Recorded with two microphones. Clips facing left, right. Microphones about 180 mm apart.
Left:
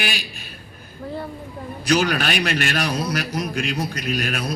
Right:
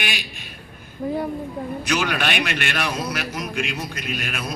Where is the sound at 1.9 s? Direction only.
35° left (ahead or behind).